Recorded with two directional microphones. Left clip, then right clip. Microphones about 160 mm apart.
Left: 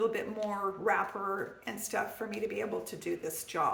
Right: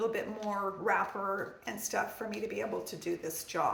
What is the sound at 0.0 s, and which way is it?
A woman's voice, 25° left (ahead or behind).